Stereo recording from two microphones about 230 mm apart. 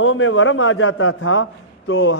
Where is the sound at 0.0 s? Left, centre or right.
Left.